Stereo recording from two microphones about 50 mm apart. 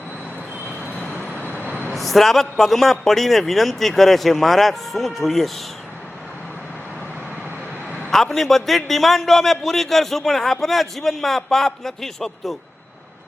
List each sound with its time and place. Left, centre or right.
1.4 s vehicle: left
1.9 s a man's voice: centre
8.1 s a man's voice: centre